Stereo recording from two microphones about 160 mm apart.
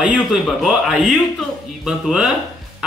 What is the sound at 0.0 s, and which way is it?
Speech, 5° right (ahead or behind).